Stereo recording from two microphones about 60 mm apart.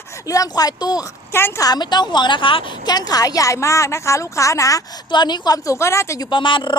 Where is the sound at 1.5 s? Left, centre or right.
Left.